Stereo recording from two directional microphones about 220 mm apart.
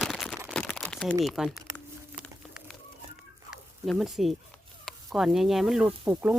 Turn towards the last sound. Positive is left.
turn(degrees=-10)  # may be behind; listen again after turning